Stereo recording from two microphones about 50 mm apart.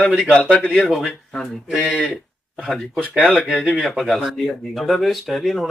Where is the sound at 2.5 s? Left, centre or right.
Centre.